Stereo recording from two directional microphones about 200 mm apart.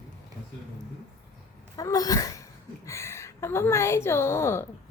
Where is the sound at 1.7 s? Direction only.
15° left (ahead or behind).